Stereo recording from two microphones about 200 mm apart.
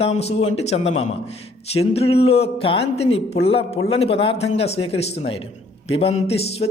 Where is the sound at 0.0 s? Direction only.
30° left (ahead or behind).